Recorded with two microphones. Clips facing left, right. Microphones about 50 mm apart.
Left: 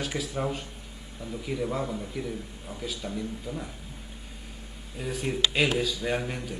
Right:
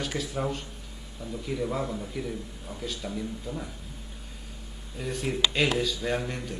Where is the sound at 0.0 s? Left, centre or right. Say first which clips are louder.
Even; centre.